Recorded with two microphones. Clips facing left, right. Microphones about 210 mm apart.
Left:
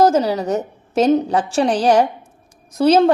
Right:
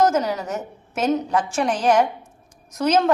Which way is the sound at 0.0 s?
30° left (ahead or behind).